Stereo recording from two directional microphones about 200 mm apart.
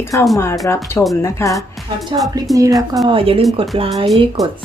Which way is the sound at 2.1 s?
25° right (ahead or behind).